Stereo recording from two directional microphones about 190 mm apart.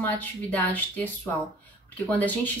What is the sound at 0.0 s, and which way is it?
A woman's voice, 10° left (ahead or behind).